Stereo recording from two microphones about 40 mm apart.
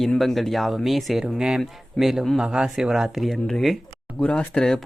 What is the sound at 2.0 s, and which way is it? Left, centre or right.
Speech, centre.